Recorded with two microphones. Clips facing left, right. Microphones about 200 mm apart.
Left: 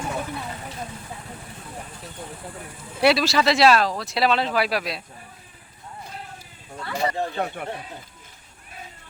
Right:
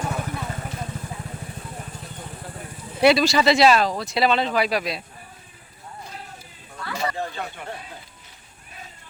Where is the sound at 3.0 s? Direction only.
Centre (ahead or behind).